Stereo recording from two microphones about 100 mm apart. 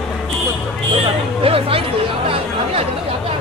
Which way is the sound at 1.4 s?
70° right (ahead or behind).